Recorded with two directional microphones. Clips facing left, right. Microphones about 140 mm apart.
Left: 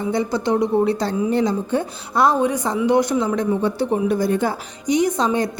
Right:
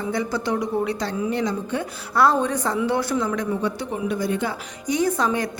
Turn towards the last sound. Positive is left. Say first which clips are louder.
# left 3 dB
turn(degrees=25)  # may be behind; listen again after turning